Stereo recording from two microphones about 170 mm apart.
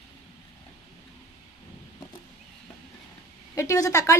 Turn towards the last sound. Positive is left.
turn(degrees=20)  # may be behind; listen again after turning